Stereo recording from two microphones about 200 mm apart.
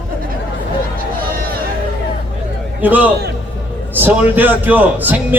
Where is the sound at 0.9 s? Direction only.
45° right (ahead or behind).